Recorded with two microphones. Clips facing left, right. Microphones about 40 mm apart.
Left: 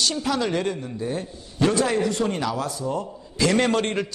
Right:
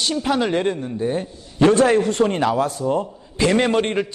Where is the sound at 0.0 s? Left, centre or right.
Right.